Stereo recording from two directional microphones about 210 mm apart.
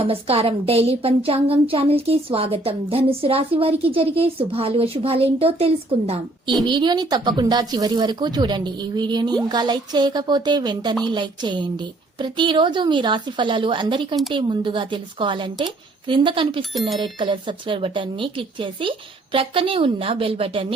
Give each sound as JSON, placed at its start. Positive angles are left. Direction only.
{"t": 0.0, "sound": "speech", "side_deg": -25}